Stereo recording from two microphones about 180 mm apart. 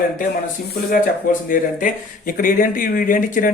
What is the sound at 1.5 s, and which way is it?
Speech, 50° left (ahead or behind).